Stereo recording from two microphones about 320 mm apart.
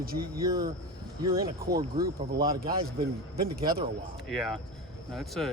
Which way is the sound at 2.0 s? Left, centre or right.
Right.